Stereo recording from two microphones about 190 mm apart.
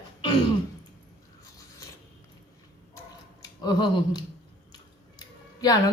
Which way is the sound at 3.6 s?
20° left (ahead or behind).